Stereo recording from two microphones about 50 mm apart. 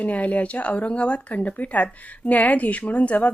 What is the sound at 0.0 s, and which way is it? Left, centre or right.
A woman's voice, left.